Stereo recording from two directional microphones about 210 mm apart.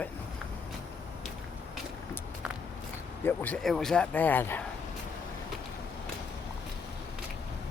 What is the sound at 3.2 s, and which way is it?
Speech, 10° left (ahead or behind).